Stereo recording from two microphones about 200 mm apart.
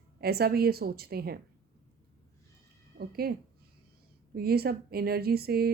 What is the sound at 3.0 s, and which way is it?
Speech, 50° right (ahead or behind).